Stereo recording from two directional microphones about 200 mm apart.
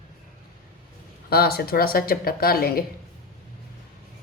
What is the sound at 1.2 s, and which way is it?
A woman's voice, 50° left (ahead or behind).